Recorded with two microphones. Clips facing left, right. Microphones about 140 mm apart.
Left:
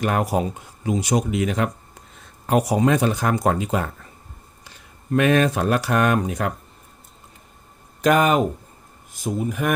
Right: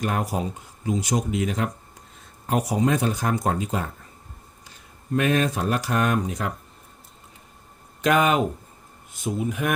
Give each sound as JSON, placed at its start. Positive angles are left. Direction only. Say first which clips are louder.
{"t": 0.0, "sound": "speech", "louder": "left 4 dB", "side_deg": 80}
{"t": 5.1, "sound": "speech", "louder": "left 4 dB", "side_deg": 75}
{"t": 8.0, "sound": "speech", "louder": "left 3 dB", "side_deg": 45}
{"t": 9.4, "sound": "speech", "louder": "left 2 dB", "side_deg": 45}